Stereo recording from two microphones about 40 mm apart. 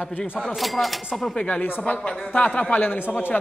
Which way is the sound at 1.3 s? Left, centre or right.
Left.